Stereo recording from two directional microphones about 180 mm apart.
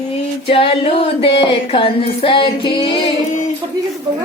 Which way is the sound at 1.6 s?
30° left (ahead or behind).